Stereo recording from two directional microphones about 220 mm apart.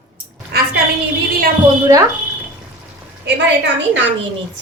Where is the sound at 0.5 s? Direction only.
45° right (ahead or behind).